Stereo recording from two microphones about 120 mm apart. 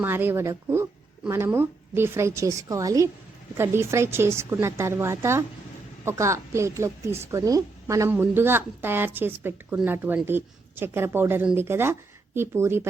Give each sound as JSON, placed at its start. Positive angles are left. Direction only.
{"t": 0.0, "sound": "a woman's voice", "side_deg": -20}
{"t": 8.1, "sound": "a woman's voice", "side_deg": -15}